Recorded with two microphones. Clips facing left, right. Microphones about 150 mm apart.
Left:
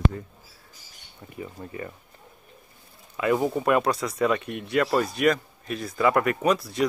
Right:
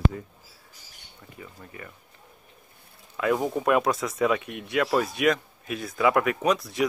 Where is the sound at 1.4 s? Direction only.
30° left (ahead or behind).